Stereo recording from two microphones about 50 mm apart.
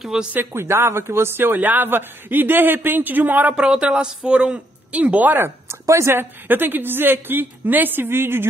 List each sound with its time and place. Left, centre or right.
0.1 s speech: centre
0.5 s speech: right
3.5 s a woman's voice: right
5.3 s speech: right
5.9 s speech: right
6.1 s speech: right